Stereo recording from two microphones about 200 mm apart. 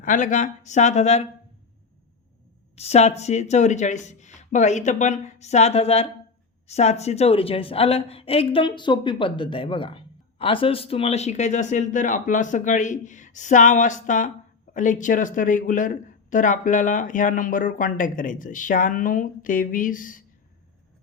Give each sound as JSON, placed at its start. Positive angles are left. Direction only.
{"t": 0.0, "sound": "a woman's voice", "side_deg": 40}
{"t": 2.7, "sound": "a woman's voice", "side_deg": 30}